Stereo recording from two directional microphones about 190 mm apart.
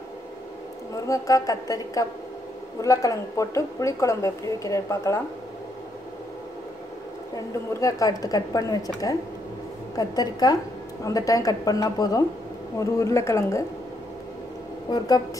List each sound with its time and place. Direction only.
1.0 s a woman's voice: 15° left (ahead or behind)
7.3 s a woman's voice: 20° left (ahead or behind)
14.9 s a woman's voice: 20° left (ahead or behind)